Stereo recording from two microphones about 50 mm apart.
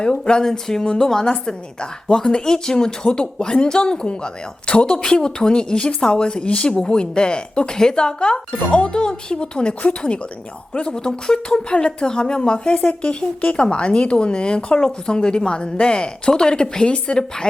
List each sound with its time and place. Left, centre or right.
0.0 s a woman's voice: centre